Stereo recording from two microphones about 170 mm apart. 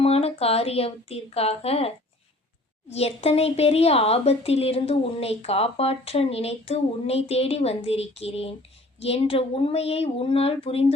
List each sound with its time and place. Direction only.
0.0 s speech: 35° left (ahead or behind)
2.9 s speech: 35° left (ahead or behind)